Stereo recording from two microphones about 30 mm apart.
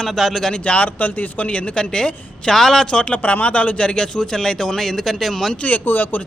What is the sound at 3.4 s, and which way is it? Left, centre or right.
Speech, left.